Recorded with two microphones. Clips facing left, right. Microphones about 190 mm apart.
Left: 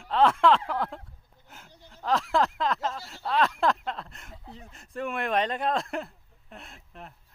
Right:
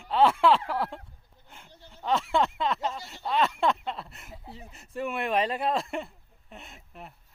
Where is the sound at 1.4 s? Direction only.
5° left (ahead or behind).